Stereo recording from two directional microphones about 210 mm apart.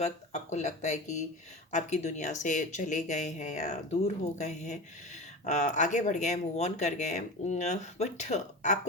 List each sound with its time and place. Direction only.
0.0 s speech: 35° left (ahead or behind)